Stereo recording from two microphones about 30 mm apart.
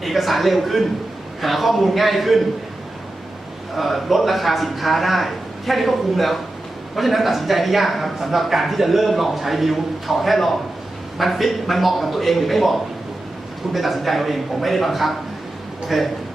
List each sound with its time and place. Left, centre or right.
0.0 s speech: centre
3.8 s speech: centre